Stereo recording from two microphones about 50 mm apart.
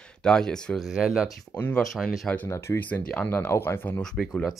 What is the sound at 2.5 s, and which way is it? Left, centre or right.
Speech, left.